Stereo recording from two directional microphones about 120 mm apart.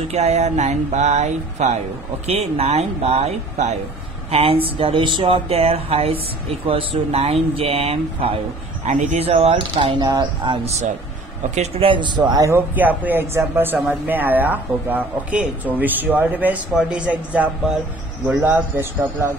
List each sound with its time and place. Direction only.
0.1 s music: 70° right (ahead or behind)
2.2 s speech: 60° right (ahead or behind)
4.3 s speech: 55° right (ahead or behind)
8.8 s speech: 80° right; by 10.6 s 40° right (ahead or behind)
11.5 s music: 65° right (ahead or behind)
11.9 s a man's voice: 40° right (ahead or behind)
12.3 s a man's voice: 30° right (ahead or behind)
12.5 s speech: 15° right (ahead or behind)